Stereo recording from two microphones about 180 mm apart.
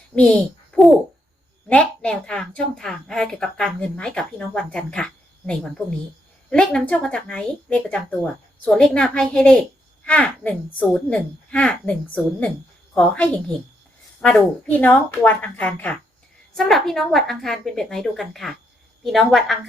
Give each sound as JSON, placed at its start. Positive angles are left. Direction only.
{"t": 0.2, "sound": "a child's voice", "side_deg": 5}